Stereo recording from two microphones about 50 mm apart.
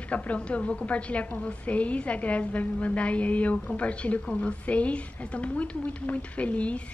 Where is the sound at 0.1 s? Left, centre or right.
Left.